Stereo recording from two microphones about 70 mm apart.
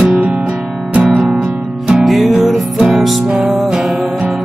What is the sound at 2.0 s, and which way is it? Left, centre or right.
Music, centre.